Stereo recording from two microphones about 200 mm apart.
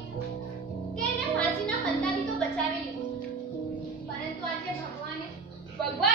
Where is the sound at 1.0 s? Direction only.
5° left (ahead or behind).